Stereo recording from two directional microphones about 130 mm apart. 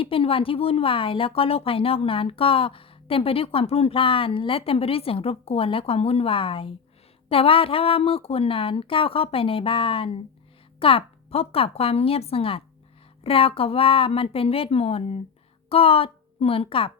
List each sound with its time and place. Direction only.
0.0 s a woman's voice: 45° left (ahead or behind)